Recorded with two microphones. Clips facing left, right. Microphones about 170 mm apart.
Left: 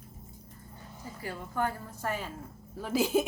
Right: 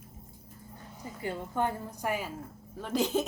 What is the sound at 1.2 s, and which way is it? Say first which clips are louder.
A woman's voice: right 2 dB; 20° right (ahead or behind).